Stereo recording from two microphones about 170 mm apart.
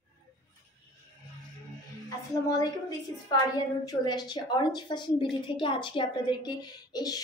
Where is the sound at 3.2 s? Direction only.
25° left (ahead or behind).